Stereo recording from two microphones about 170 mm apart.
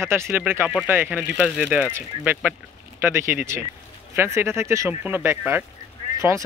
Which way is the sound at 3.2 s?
15° right (ahead or behind).